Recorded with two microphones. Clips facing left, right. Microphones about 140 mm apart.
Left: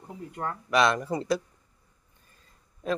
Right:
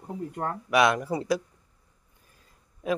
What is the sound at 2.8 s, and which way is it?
Speech, 5° right (ahead or behind).